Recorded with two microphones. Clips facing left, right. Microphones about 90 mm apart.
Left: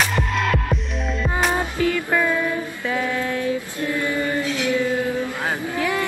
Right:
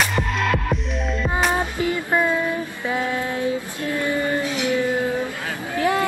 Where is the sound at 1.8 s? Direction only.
25° right (ahead or behind).